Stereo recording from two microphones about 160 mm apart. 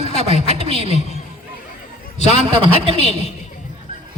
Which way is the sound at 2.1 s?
45° left (ahead or behind).